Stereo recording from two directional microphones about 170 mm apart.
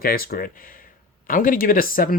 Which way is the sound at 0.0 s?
60° left (ahead or behind).